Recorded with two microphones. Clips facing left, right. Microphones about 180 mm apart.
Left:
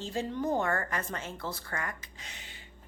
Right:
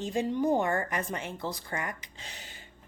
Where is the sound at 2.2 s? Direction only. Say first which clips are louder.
Right 4 dB; 35° right (ahead or behind).